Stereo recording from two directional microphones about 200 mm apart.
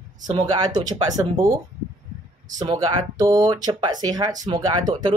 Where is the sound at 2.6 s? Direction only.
20° right (ahead or behind).